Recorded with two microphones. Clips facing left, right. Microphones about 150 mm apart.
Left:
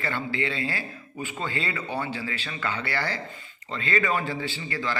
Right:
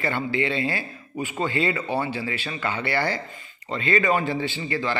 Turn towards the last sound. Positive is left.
turn(degrees=-20)  # may be behind; listen again after turning